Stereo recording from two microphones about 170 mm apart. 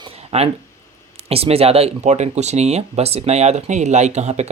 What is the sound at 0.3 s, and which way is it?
Speech, 35° right (ahead or behind).